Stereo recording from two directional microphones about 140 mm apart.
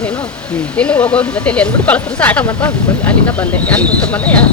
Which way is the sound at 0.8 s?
10° left (ahead or behind).